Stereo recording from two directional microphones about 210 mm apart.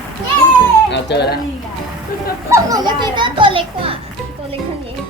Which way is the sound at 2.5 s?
15° right (ahead or behind).